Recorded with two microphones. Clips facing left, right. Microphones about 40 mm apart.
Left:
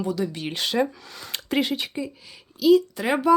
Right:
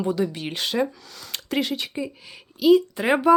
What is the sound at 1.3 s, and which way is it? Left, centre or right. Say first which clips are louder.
Speech: left 1 dB; centre.